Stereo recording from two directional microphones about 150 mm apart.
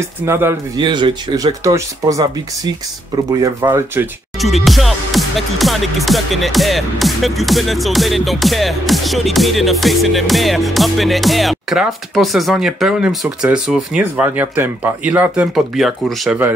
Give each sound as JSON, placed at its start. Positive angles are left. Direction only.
{"t": 0.2, "sound": "speech", "side_deg": -15}
{"t": 0.7, "sound": "speech", "side_deg": -30}
{"t": 4.4, "sound": "music", "side_deg": 0}